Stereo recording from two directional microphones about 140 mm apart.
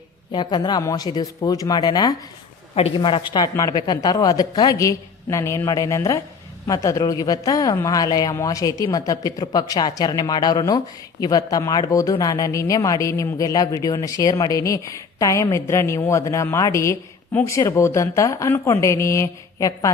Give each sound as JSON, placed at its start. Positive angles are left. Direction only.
{"t": 0.3, "sound": "a woman's voice", "side_deg": 35}
{"t": 2.7, "sound": "a woman's voice", "side_deg": 40}